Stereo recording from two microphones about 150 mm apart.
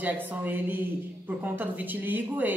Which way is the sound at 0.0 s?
10° right (ahead or behind).